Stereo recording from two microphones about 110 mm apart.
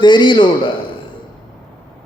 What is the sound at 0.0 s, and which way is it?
Speech, 45° left (ahead or behind).